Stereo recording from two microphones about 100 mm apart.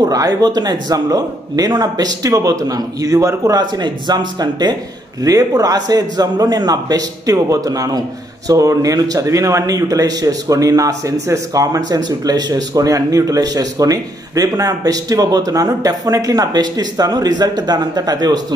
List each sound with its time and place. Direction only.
0.0 s speech: 40° right (ahead or behind)